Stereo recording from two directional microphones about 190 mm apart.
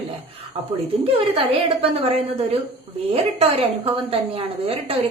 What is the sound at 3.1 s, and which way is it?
A woman's voice, 30° right (ahead or behind).